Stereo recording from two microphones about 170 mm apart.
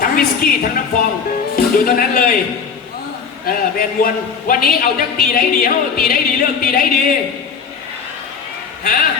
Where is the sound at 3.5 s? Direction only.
55° left (ahead or behind).